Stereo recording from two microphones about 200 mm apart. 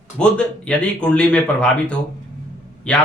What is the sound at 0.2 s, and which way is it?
Speech, 5° left (ahead or behind).